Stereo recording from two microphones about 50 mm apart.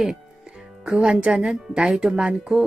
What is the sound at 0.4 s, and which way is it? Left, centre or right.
Speech, centre.